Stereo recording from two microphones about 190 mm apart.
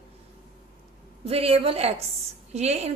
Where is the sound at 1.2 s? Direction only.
30° right (ahead or behind).